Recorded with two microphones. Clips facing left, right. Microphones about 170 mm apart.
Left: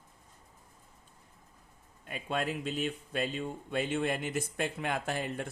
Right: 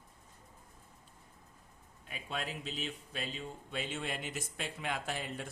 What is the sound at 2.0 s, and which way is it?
Speech, 50° left (ahead or behind).